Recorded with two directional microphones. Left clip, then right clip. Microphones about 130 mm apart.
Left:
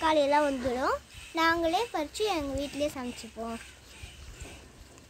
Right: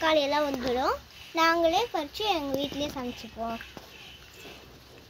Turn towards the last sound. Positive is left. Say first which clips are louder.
# right 4 dB
turn(degrees=50)  # may be behind; listen again after turning